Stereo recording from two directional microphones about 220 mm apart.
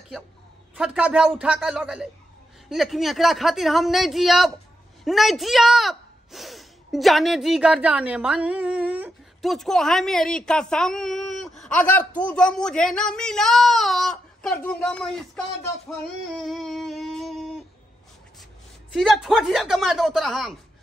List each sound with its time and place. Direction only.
0.7 s speech: 5° right (ahead or behind)
16.3 s a sound: centre (ahead or behind)
18.9 s speech: centre (ahead or behind)